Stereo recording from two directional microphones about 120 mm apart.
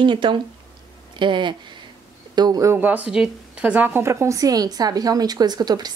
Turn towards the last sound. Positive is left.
turn(degrees=-35)  # may be behind; listen again after turning